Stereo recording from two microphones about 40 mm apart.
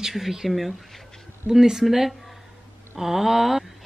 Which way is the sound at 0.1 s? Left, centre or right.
Centre.